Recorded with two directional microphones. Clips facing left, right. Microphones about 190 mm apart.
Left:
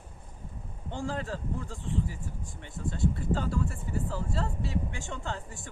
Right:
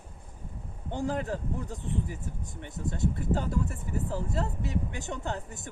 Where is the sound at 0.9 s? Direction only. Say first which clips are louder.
Right 3 dB; 15° right (ahead or behind).